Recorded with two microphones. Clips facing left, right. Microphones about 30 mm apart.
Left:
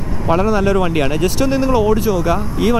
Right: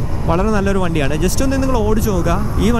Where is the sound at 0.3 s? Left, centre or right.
Centre.